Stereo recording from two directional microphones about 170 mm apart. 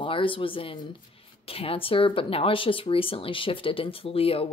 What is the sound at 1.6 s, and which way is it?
Speech, 35° left (ahead or behind).